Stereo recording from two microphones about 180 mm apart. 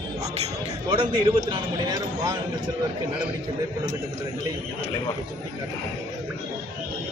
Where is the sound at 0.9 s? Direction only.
25° right (ahead or behind).